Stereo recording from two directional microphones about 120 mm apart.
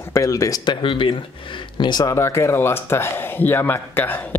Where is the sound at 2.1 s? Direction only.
25° left (ahead or behind).